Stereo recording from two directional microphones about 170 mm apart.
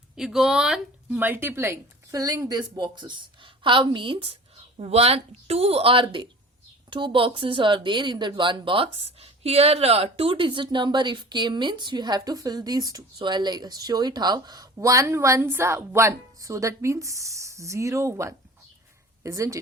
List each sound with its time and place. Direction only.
0.2 s a woman's voice: centre (ahead or behind); by 19.5 s 20° right (ahead or behind)